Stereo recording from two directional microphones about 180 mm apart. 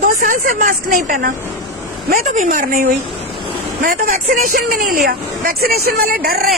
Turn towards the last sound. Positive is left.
turn(degrees=-55)  # may be behind; listen again after turning